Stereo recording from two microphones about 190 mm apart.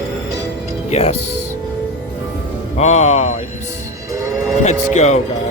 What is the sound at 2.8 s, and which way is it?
Speech, 35° left (ahead or behind).